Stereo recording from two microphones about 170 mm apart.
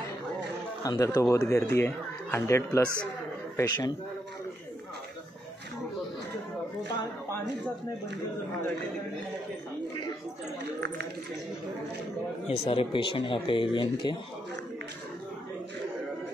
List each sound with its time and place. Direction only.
0.8 s speech: 20° left (ahead or behind)
10.6 s speech: 90° right
12.4 s speech: 30° left (ahead or behind)